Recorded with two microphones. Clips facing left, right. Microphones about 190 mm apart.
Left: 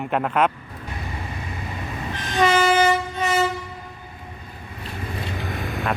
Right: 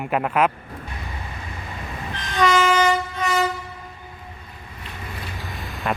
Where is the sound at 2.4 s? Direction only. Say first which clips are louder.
Even; 25° left (ahead or behind).